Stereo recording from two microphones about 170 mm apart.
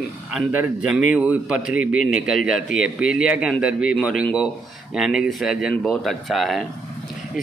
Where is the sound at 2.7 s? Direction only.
5° right (ahead or behind).